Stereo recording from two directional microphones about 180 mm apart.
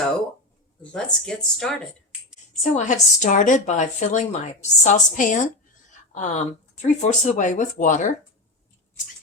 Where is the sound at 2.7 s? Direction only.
45° left (ahead or behind).